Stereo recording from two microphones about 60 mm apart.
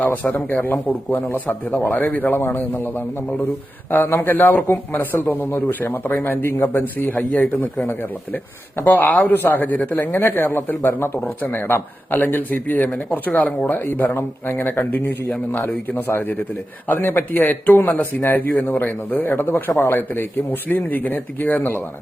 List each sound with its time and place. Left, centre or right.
0.0 s a man's voice: left
3.9 s speech: left
8.8 s speech: left